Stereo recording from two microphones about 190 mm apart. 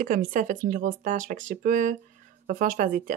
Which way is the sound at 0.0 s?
45° right (ahead or behind).